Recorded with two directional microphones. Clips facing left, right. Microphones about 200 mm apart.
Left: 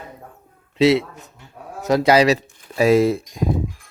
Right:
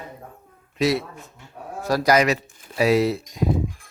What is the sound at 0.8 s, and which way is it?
Speech, 25° left (ahead or behind).